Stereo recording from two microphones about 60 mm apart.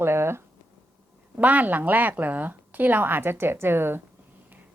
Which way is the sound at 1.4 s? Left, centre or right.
Right.